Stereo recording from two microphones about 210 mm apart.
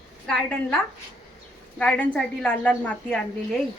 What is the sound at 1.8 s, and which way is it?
A woman's voice, 5° left (ahead or behind).